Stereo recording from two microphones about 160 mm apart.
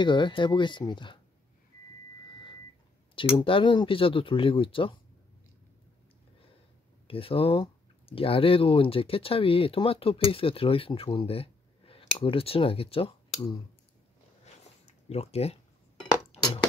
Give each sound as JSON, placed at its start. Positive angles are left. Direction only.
{"t": 0.0, "sound": "speech", "side_deg": 30}
{"t": 3.3, "sound": "speech", "side_deg": 30}
{"t": 7.1, "sound": "speech", "side_deg": 35}
{"t": 15.0, "sound": "speech", "side_deg": 40}
{"t": 16.3, "sound": "a sound", "side_deg": 40}